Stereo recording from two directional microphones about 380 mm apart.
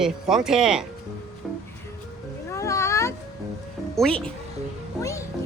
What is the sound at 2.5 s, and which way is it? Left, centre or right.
Cat, centre.